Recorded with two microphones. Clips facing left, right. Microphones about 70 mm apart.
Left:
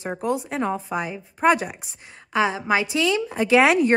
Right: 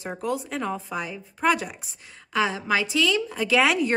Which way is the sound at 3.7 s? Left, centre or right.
Left.